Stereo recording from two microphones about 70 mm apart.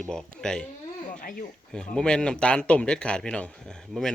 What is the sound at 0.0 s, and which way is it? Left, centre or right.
Speech, centre.